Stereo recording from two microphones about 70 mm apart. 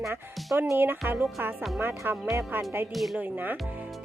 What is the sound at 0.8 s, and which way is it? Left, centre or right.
Speech, right.